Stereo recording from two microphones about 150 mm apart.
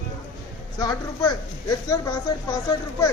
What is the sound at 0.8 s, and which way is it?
Speech, 25° left (ahead or behind).